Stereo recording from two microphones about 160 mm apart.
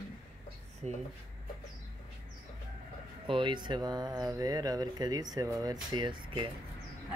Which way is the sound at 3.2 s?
30° right (ahead or behind).